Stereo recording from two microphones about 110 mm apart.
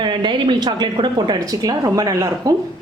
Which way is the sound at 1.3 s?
35° right (ahead or behind).